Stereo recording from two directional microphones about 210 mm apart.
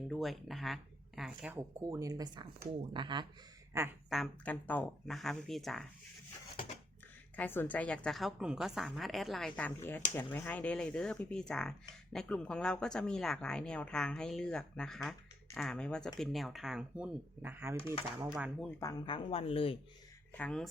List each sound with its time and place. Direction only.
0.1 s a woman's voice: centre (ahead or behind); by 3.2 s 20° right (ahead or behind)
4.1 s a woman's voice: 5° left (ahead or behind)
7.3 s a woman's voice: 10° left (ahead or behind); by 18.5 s 5° right (ahead or behind)
18.6 s speech: 15° left (ahead or behind)
20.3 s a woman's voice: 5° left (ahead or behind)